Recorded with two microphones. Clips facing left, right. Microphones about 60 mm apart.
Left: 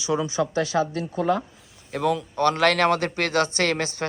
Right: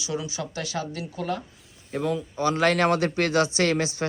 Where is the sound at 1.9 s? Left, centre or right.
Left.